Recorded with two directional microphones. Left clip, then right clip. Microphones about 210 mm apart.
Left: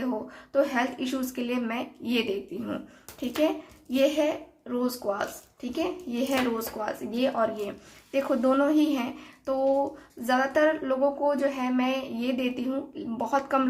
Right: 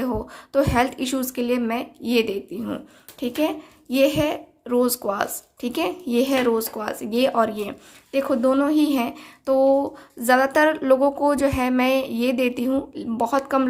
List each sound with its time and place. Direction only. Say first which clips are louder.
0.0 s a woman's voice: right 5 dB; 35° right (ahead or behind)
8.2 s a woman's voice: right 4 dB; 25° right (ahead or behind)